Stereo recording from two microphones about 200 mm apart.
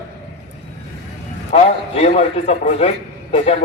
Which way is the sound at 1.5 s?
30° left (ahead or behind).